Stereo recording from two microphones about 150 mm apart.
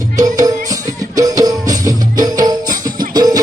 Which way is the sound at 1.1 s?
25° right (ahead or behind).